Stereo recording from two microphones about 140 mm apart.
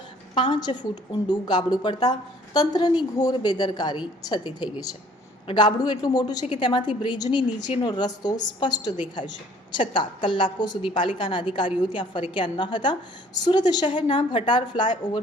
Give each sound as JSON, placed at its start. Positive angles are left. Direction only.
{"t": 0.3, "sound": "a woman's voice", "side_deg": 35}